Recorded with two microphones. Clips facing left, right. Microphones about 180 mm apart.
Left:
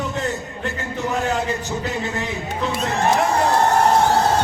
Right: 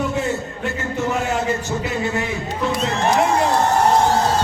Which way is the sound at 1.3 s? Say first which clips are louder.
Right 2 dB; 15° left (ahead or behind).